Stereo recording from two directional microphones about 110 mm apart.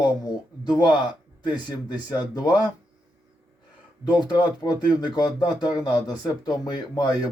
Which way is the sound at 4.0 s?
40° left (ahead or behind).